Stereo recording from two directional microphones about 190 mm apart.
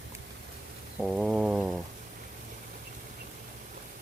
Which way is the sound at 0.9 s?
5° right (ahead or behind).